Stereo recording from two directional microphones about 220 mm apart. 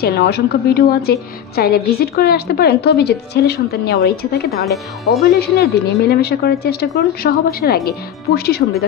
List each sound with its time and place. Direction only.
0.0 s a woman's voice: 45° left (ahead or behind)